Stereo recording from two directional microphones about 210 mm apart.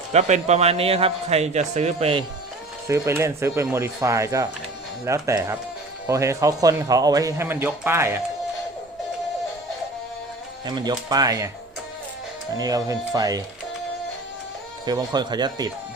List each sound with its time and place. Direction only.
0.1 s a man's voice: 30° right (ahead or behind)
2.8 s speech: 15° right (ahead or behind)
10.7 s speech: 20° right (ahead or behind)
12.5 s speech: 15° right (ahead or behind)
14.8 s speech: 20° right (ahead or behind)